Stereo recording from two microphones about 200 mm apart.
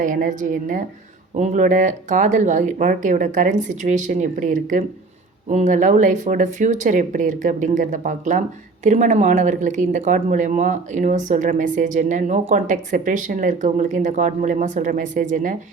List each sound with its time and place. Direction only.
0.0 s speech: 40° right (ahead or behind)